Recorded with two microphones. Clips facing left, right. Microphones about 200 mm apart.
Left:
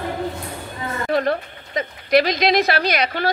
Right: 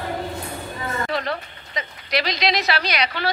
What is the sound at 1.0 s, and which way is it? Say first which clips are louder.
A woman's voice: left 6 dB; 50° left (ahead or behind).